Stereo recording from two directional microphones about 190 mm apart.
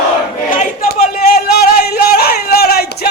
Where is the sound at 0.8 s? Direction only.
55° left (ahead or behind).